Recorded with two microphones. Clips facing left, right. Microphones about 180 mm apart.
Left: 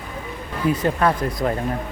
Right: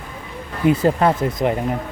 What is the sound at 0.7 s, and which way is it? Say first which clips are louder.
Speech: right 4 dB; 25° right (ahead or behind).